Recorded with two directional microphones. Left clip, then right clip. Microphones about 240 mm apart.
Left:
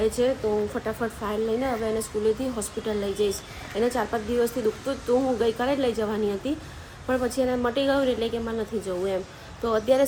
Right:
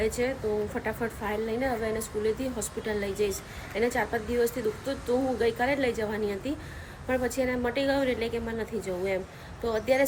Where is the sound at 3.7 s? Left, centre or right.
Centre.